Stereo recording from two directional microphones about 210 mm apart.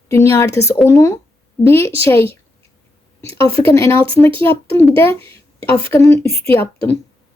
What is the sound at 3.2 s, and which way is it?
Speech, 25° right (ahead or behind).